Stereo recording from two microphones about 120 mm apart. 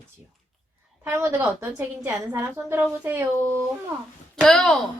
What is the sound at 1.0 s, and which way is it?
A woman's voice, 20° right (ahead or behind).